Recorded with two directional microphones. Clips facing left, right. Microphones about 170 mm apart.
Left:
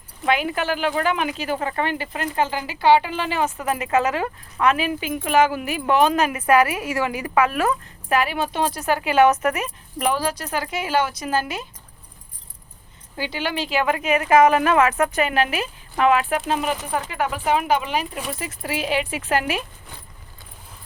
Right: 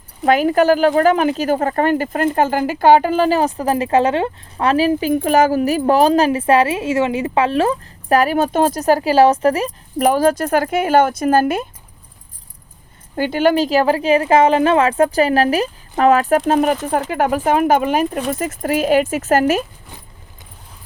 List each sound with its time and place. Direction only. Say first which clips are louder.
0.3 s speech: right 9 dB; 40° right (ahead or behind)
13.1 s speech: right 11 dB; 50° right (ahead or behind)